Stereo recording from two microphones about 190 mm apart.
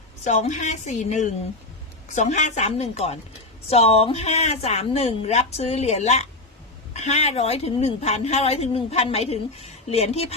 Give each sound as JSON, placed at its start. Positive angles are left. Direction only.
{"t": 0.3, "sound": "a woman's voice", "side_deg": 40}